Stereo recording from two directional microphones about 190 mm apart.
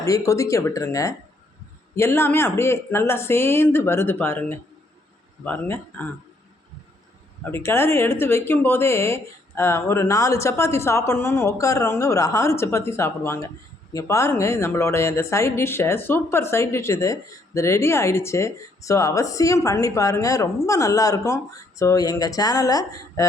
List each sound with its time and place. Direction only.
0.0 s a woman's voice: 15° left (ahead or behind)
7.5 s a woman's voice: 15° left (ahead or behind)